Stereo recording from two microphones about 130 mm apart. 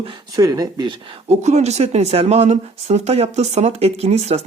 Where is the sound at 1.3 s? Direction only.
60° right (ahead or behind).